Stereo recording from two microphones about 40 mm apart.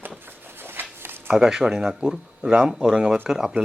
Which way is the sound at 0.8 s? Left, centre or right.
Right.